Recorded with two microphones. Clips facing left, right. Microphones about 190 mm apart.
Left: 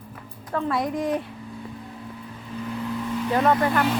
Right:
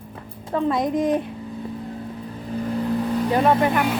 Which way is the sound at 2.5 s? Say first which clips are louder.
Right 6 dB; 35° right (ahead or behind).